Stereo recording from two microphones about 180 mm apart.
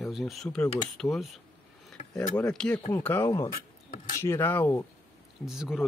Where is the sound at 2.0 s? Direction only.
40° left (ahead or behind).